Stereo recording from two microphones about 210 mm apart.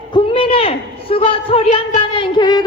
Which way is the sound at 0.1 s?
25° left (ahead or behind).